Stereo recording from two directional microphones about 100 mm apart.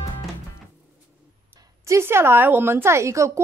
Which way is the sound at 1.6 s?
30° right (ahead or behind).